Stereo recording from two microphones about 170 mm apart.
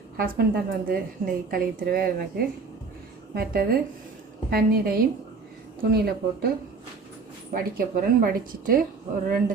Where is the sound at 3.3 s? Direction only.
60° right (ahead or behind).